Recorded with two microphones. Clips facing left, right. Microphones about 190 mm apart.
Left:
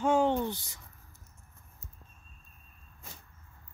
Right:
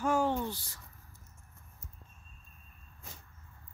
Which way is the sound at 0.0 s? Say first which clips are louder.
Left 4 dB; 20° left (ahead or behind).